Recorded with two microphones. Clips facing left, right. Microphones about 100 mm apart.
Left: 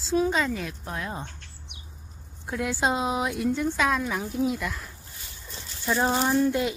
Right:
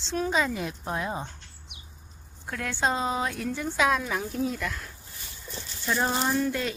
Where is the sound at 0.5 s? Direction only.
20° right (ahead or behind).